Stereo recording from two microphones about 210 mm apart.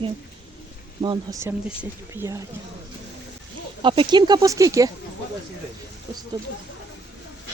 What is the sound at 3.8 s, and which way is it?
Speech, 25° right (ahead or behind).